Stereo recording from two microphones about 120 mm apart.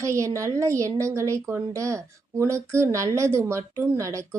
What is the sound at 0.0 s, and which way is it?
Speech, 25° right (ahead or behind).